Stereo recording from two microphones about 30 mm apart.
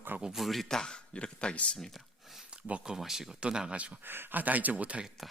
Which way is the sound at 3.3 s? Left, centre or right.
Right.